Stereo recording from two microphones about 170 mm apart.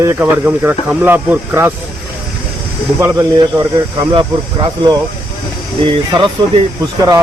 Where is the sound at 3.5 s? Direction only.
25° right (ahead or behind).